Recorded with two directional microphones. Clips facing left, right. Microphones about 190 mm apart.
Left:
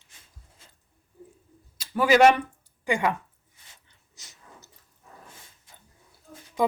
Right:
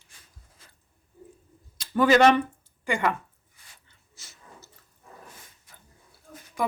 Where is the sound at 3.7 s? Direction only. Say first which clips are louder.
Even; 20° left (ahead or behind).